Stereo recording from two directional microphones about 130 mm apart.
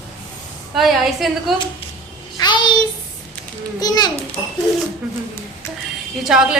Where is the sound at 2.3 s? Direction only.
35° left (ahead or behind).